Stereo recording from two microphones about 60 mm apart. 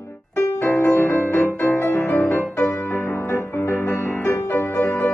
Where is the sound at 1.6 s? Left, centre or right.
Left.